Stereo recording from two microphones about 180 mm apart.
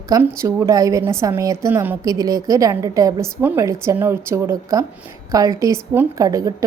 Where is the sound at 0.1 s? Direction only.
15° right (ahead or behind).